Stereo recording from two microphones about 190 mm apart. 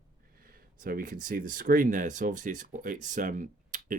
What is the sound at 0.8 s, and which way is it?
Speech, 45° right (ahead or behind).